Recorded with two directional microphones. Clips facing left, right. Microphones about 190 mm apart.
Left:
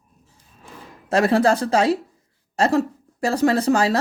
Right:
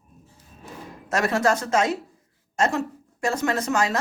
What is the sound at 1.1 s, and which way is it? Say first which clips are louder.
Speech: left 5 dB; 30° left (ahead or behind).